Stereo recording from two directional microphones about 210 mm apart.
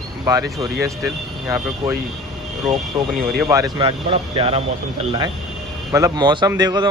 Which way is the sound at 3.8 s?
25° right (ahead or behind).